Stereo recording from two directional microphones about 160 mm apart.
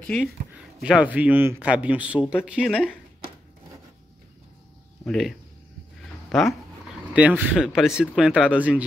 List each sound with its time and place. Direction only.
0.8 s speech: 5° right (ahead or behind)
5.0 s speech: centre (ahead or behind)
6.3 s speech: centre (ahead or behind)